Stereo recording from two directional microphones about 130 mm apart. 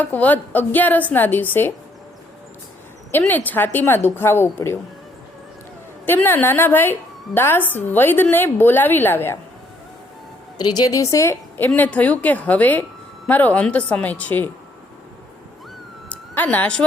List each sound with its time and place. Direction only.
0.0 s a woman's voice: 15° left (ahead or behind)
3.1 s a woman's voice: 15° left (ahead or behind)
6.1 s a woman's voice: 15° left (ahead or behind)
10.6 s a woman's voice: 30° left (ahead or behind); by 14.5 s 15° left (ahead or behind)
16.0 s a sound: 10° left (ahead or behind)